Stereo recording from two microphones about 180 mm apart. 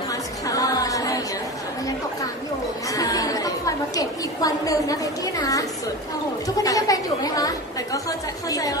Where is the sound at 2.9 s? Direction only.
20° left (ahead or behind).